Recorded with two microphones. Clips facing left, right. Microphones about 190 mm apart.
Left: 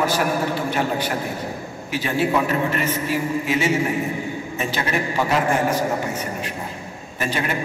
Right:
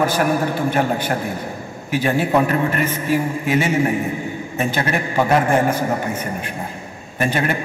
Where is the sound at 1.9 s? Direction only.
50° right (ahead or behind).